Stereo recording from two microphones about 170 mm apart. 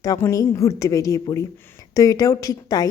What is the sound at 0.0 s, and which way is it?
A woman's voice, 20° left (ahead or behind).